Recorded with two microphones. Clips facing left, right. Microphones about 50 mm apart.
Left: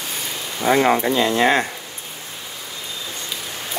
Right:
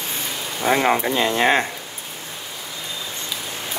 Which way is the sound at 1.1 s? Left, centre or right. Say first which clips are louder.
Left 1 dB; right.